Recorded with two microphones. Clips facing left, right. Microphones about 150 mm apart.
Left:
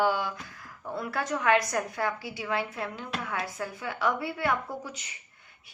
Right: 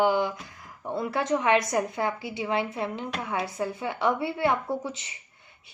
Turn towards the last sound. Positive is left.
turn(degrees=-25)  # may be behind; listen again after turning